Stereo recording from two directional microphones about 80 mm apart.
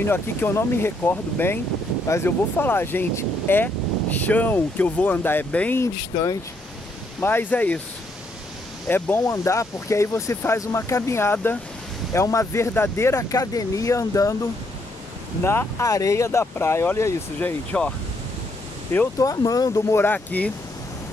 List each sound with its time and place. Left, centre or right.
0.0 s speech: left
6.1 s speech: left
7.2 s speech: left
8.8 s speech: left
9.2 s speech: left
15.4 s speech: left
17.7 s speech: centre
19.1 s speech: left
19.9 s speech: left